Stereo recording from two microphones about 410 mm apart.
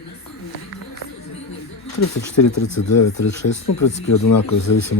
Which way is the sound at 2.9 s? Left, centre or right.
Left.